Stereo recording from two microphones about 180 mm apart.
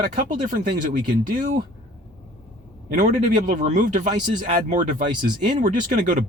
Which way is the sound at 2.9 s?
45° right (ahead or behind).